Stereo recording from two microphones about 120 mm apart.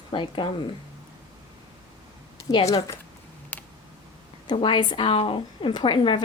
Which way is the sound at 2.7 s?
30° left (ahead or behind).